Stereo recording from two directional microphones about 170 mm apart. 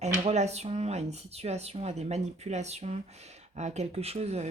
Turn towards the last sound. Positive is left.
turn(degrees=-40)  # may be behind; listen again after turning